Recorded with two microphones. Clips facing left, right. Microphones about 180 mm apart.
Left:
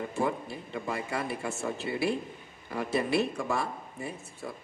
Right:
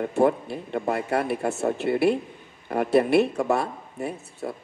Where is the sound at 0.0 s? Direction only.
65° right (ahead or behind).